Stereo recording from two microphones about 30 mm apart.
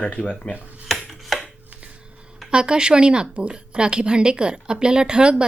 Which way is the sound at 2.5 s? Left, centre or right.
Right.